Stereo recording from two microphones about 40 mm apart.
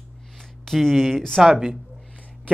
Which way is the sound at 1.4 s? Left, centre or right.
Centre.